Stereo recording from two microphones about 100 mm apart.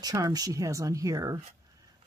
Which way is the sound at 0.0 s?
40° right (ahead or behind).